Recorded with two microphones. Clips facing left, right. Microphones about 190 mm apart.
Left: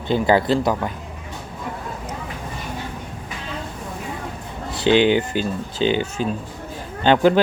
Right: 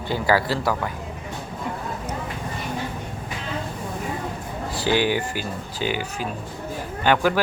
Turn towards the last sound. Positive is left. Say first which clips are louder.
# left 5 dB
turn(degrees=25)  # may be behind; listen again after turning